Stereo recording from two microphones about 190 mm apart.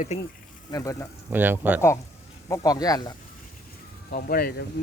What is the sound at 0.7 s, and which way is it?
Speech, 15° left (ahead or behind).